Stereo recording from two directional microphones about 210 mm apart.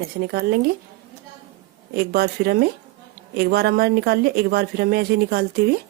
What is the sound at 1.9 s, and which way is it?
Speech, 50° right (ahead or behind).